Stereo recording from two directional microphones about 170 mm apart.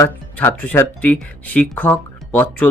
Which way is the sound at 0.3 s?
10° left (ahead or behind).